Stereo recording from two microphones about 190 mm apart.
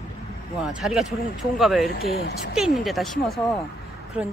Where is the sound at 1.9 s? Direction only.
55° left (ahead or behind).